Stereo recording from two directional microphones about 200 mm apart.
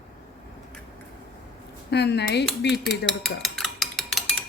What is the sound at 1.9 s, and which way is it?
Speech, 60° left (ahead or behind).